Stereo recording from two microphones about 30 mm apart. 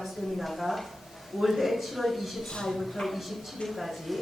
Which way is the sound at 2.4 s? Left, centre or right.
Centre.